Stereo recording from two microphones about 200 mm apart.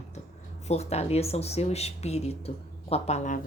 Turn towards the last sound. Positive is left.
turn(degrees=35)  # may be behind; listen again after turning